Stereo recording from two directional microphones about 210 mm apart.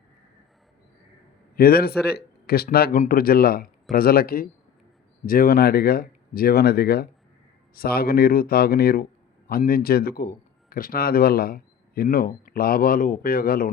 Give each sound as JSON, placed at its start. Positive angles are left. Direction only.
{"t": 1.5, "sound": "speech", "side_deg": 45}